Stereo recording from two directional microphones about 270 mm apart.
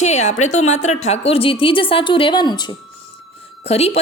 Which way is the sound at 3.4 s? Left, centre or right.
Left.